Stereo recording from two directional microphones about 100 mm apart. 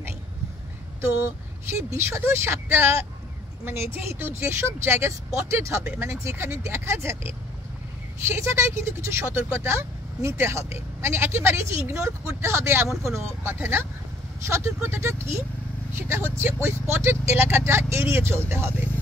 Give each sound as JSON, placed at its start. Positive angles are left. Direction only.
{"t": 1.0, "sound": "speech", "side_deg": -25}